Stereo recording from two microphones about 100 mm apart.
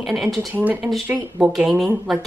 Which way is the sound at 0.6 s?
15° right (ahead or behind).